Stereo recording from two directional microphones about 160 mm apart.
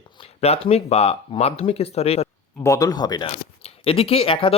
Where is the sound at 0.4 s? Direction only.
40° left (ahead or behind).